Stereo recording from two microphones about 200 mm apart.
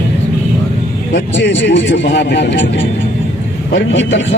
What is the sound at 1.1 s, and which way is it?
Speech, 65° left (ahead or behind).